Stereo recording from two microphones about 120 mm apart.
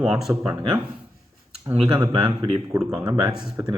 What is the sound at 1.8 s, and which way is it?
Speech, 5° right (ahead or behind).